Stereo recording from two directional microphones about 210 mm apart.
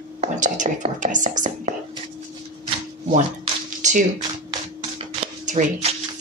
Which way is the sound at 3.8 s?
35° right (ahead or behind).